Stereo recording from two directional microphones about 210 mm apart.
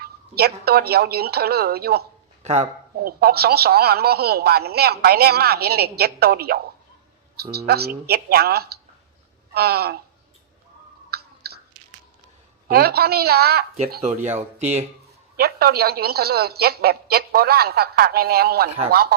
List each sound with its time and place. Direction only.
0.0 s speech: 45° right (ahead or behind)
2.4 s speech: 30° right (ahead or behind)
3.0 s speech: 45° right (ahead or behind)
11.1 s a sound: 50° right (ahead or behind)
12.6 s speech: 45° right (ahead or behind)
14.0 s speech: 35° right (ahead or behind)
15.4 s speech: 50° right (ahead or behind)